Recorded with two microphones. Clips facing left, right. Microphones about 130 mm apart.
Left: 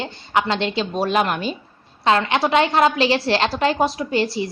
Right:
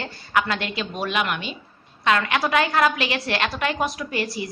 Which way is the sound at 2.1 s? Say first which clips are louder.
Left 3 dB; 30° left (ahead or behind).